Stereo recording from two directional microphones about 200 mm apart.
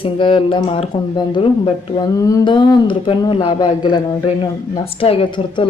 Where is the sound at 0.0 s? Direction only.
25° left (ahead or behind).